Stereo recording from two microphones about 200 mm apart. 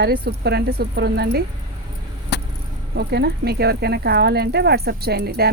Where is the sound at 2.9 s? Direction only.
55° right (ahead or behind).